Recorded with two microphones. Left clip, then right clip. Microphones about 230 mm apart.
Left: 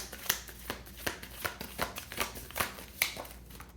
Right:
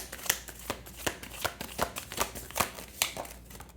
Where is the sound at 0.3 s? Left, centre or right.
Right.